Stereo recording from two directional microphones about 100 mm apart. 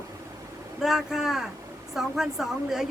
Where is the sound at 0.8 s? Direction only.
5° right (ahead or behind).